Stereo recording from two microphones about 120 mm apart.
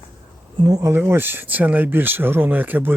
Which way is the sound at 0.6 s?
30° right (ahead or behind).